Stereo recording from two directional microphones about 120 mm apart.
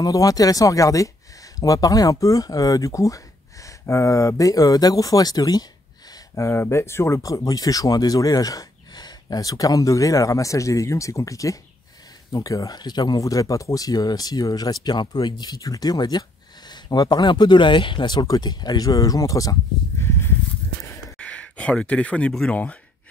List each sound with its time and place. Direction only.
0.0 s speech: 30° left (ahead or behind)
20.0 s a sound: 20° left (ahead or behind)
21.2 s speech: 10° left (ahead or behind)